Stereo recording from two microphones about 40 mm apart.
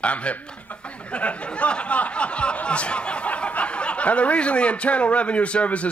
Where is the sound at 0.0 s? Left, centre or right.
Left.